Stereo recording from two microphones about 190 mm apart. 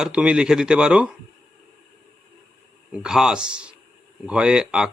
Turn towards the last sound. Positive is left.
turn(degrees=-5)  # may be behind; listen again after turning